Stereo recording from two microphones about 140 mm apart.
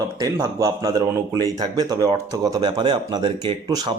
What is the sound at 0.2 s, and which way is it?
Speech, 20° right (ahead or behind).